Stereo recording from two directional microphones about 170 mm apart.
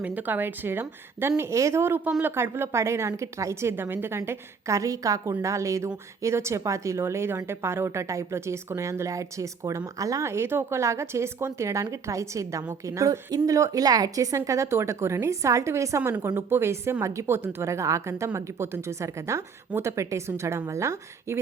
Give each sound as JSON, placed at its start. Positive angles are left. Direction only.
{"t": 0.0, "sound": "a woman's voice", "side_deg": -10}